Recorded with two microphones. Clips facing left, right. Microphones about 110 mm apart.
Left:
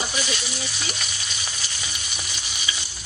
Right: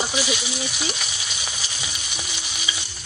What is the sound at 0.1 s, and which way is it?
Sizzle, 10° right (ahead or behind).